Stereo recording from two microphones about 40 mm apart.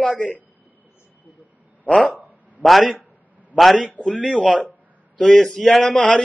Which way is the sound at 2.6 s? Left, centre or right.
Centre.